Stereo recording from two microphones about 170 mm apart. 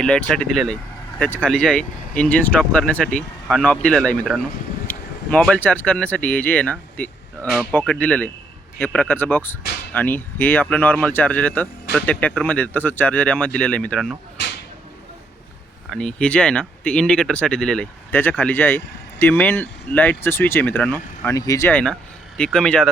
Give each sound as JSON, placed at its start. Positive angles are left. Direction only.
{"t": 0.0, "sound": "speech", "side_deg": 5}
{"t": 14.4, "sound": "a sound", "side_deg": 90}
{"t": 15.9, "sound": "speech", "side_deg": 5}
{"t": 21.7, "sound": "speech", "side_deg": 10}